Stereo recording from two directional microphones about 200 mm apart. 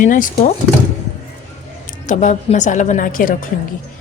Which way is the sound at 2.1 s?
35° left (ahead or behind).